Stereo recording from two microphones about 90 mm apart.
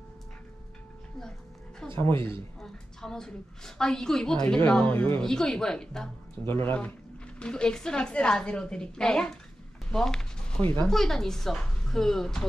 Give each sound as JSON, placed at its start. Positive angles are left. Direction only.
{"t": 2.0, "sound": "speech", "side_deg": 30}
{"t": 2.6, "sound": "a woman's voice", "side_deg": 5}
{"t": 5.2, "sound": "a woman's voice", "side_deg": 5}
{"t": 6.4, "sound": "speech", "side_deg": 25}
{"t": 7.3, "sound": "a woman's voice", "side_deg": 10}
{"t": 9.8, "sound": "a sound", "side_deg": 5}
{"t": 10.9, "sound": "a woman's voice", "side_deg": 5}